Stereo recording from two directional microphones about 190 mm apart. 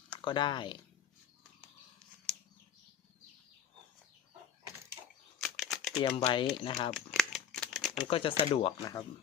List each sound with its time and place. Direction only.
0.2 s speech: 25° left (ahead or behind)
5.4 s typing: centre (ahead or behind)
6.0 s speech: 25° left (ahead or behind)
6.9 s crumpling: centre (ahead or behind)
8.0 s speech: 30° left (ahead or behind)